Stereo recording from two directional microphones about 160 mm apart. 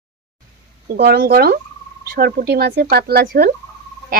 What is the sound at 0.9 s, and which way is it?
Speech, 70° right (ahead or behind).